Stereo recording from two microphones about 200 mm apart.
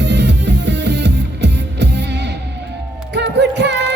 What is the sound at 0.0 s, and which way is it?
Music, 60° right (ahead or behind).